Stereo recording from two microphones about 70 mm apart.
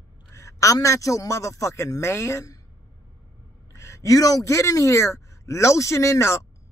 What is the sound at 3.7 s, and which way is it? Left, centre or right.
A man's voice, left.